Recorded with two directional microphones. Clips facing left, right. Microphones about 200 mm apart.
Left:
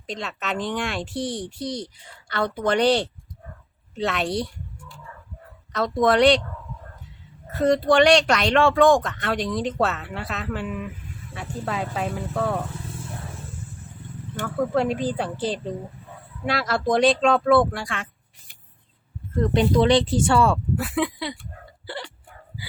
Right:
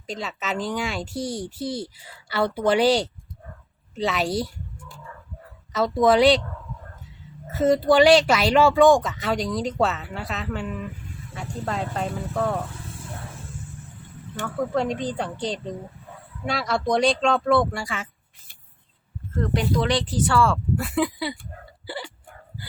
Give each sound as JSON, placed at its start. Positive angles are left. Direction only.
{"t": 0.1, "sound": "speech", "side_deg": 0}
{"t": 5.7, "sound": "speech", "side_deg": 0}
{"t": 7.5, "sound": "speech", "side_deg": 0}
{"t": 14.3, "sound": "speech", "side_deg": 5}
{"t": 19.4, "sound": "speech", "side_deg": 25}
{"t": 20.7, "sound": "speech", "side_deg": 0}
{"t": 21.8, "sound": "hiccup", "side_deg": -5}